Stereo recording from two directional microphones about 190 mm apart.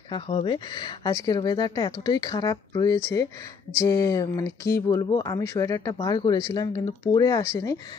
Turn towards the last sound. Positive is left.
turn(degrees=15)  # may be behind; listen again after turning